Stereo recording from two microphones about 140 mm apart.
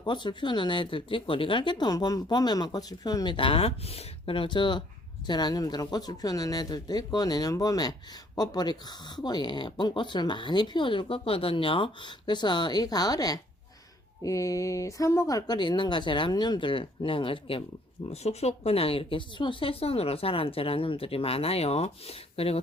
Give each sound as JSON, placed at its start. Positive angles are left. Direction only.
{"t": 0.0, "sound": "speech", "side_deg": 35}